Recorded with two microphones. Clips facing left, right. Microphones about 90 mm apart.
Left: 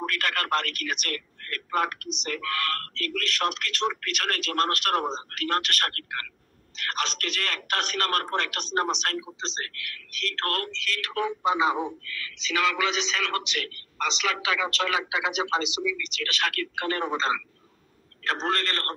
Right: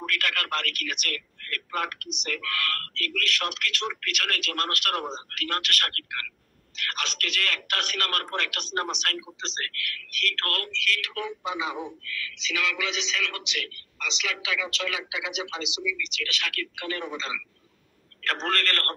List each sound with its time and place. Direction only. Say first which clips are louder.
0.0 s a man's voice: left 1 dB; 35° left (ahead or behind)
18.2 s a man's voice: left 1 dB; 20° left (ahead or behind)